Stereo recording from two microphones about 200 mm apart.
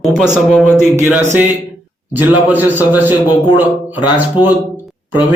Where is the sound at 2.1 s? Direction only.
10° right (ahead or behind).